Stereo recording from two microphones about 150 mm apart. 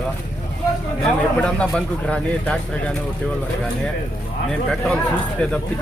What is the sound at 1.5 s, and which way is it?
Speech, 5° left (ahead or behind).